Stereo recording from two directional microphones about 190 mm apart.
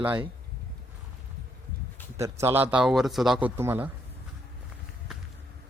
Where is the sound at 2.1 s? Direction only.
15° right (ahead or behind).